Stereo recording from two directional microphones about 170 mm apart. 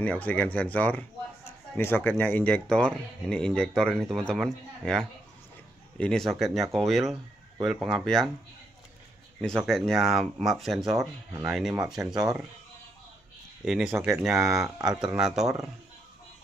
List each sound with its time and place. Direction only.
0.0 s speech: 10° left (ahead or behind)
9.6 s speech: centre (ahead or behind)
13.7 s speech: 5° right (ahead or behind)
13.9 s speech: 15° right (ahead or behind)
14.6 s speech: 5° right (ahead or behind)